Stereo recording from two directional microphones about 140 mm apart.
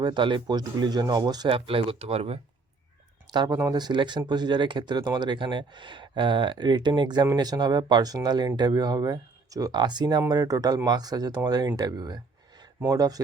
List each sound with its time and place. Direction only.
0.0 s speech: 35° right (ahead or behind)
3.3 s speech: 25° right (ahead or behind)